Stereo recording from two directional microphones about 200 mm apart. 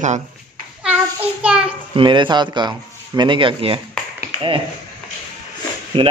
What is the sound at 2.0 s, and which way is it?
A man's voice, 25° right (ahead or behind).